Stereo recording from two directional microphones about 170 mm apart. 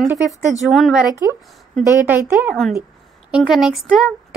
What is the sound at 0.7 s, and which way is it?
Speech, centre (ahead or behind).